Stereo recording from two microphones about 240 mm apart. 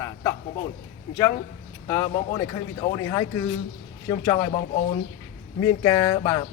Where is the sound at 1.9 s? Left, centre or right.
Centre.